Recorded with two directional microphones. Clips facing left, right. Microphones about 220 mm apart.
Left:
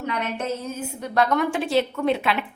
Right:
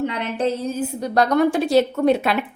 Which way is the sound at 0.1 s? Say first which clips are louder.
Right 4 dB; 30° right (ahead or behind).